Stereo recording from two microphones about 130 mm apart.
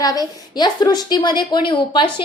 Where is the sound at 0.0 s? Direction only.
30° left (ahead or behind).